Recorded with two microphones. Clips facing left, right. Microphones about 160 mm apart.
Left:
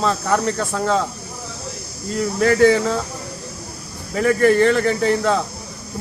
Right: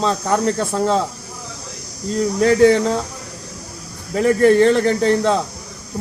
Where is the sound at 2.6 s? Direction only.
35° right (ahead or behind).